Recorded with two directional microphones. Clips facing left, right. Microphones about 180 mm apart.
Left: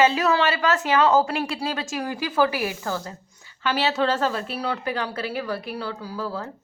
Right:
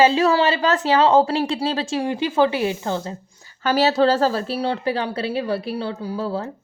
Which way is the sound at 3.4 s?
40° right (ahead or behind).